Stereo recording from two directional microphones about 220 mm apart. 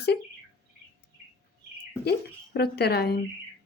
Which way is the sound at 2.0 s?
45° left (ahead or behind).